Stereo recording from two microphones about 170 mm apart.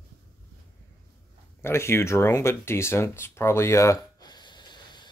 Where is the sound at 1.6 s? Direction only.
15° left (ahead or behind).